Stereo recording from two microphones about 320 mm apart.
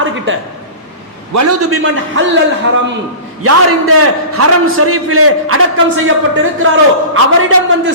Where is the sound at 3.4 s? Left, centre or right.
Right.